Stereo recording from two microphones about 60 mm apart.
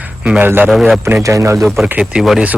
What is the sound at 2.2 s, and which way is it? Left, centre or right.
Speech, centre.